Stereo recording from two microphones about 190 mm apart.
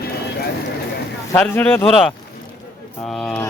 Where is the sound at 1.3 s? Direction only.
5° left (ahead or behind).